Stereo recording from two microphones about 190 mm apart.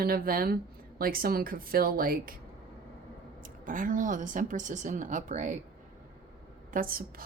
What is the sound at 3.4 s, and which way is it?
Speech, 45° right (ahead or behind).